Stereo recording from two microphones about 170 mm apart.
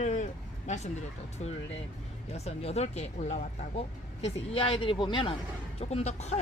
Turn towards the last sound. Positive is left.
turn(degrees=40)  # may be behind; listen again after turning